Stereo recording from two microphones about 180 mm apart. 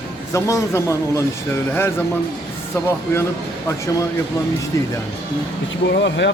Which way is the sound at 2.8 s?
15° left (ahead or behind).